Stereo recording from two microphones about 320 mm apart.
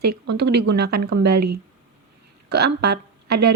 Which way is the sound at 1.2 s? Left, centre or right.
Right.